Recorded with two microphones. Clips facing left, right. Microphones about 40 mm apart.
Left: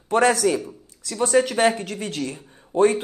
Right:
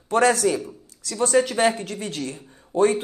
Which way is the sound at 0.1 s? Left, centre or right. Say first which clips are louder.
Left 1 dB; left.